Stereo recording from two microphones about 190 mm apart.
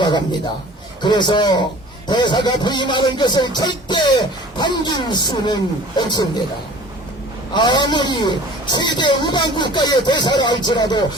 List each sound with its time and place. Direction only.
0.0 s a sound: 25° left (ahead or behind)
1.0 s a man's voice: 25° left (ahead or behind)
7.5 s a man's voice: 25° left (ahead or behind)